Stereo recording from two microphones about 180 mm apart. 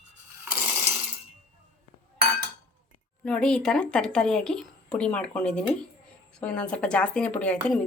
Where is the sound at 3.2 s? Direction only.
5° left (ahead or behind).